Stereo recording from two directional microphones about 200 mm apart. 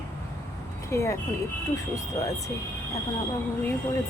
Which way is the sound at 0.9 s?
15° left (ahead or behind).